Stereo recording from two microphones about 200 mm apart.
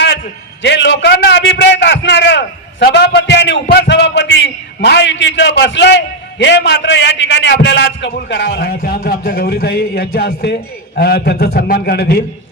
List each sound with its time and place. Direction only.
0.6 s a man's voice: 60° left (ahead or behind)